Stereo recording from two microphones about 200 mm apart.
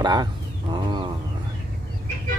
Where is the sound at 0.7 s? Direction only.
25° right (ahead or behind).